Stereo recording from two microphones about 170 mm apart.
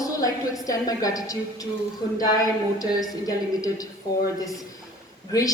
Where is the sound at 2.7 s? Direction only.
20° left (ahead or behind).